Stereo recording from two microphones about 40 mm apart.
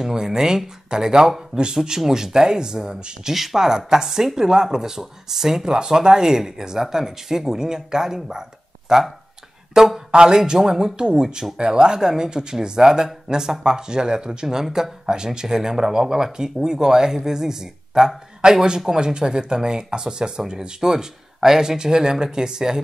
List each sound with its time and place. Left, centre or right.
0.0 s speech: centre
3.3 s speech: centre